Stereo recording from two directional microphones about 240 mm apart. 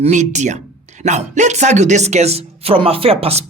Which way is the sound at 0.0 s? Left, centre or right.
Right.